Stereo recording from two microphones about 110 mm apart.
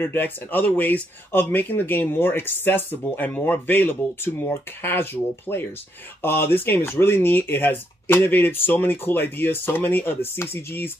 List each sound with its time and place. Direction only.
0.0 s speech: 20° left (ahead or behind)